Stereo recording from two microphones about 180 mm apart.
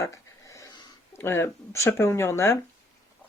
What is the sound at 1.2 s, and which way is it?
Speech, 15° left (ahead or behind).